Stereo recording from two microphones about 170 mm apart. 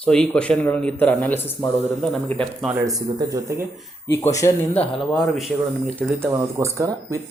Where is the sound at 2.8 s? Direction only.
20° right (ahead or behind).